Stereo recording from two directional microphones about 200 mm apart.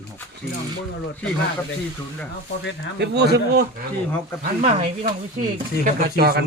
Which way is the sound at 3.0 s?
55° right (ahead or behind).